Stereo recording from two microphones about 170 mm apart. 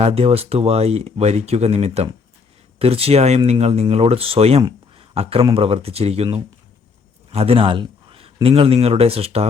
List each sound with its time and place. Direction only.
0.0 s speech: 35° right (ahead or behind)
4.6 s a sound: 35° right (ahead or behind)
5.5 s speech: 35° right (ahead or behind)